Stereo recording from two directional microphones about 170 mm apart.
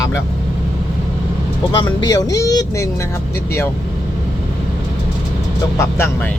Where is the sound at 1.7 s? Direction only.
25° left (ahead or behind).